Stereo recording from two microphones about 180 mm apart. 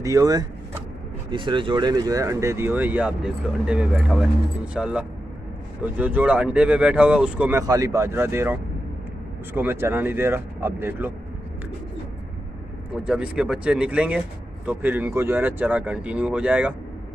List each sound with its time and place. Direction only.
0.0 s vehicle: 20° right (ahead or behind)
1.3 s speech: 25° right (ahead or behind); by 7.6 s 10° right (ahead or behind)
7.6 s speech: 20° right (ahead or behind)
12.9 s speech: 5° right (ahead or behind)